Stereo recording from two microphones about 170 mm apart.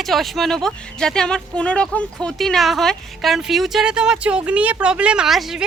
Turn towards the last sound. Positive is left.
turn(degrees=0)  # may be behind; listen again after turning